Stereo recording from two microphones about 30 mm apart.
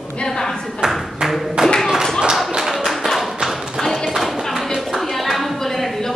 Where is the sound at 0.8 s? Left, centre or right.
Centre.